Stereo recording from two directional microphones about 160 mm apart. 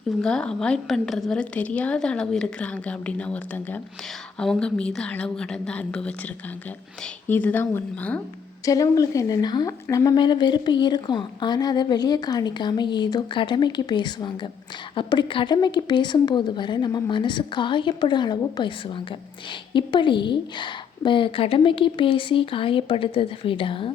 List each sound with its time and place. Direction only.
0.2 s a woman's voice: 5° left (ahead or behind); by 23.9 s 30° left (ahead or behind)